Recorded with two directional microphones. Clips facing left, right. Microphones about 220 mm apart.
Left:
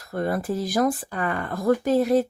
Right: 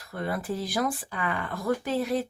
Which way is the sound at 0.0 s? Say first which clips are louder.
Left 6 dB; 45° left (ahead or behind).